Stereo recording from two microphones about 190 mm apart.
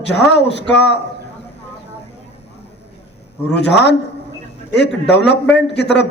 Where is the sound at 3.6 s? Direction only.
65° left (ahead or behind).